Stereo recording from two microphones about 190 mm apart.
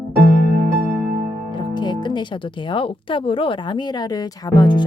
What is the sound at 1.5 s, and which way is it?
Speech, 25° left (ahead or behind).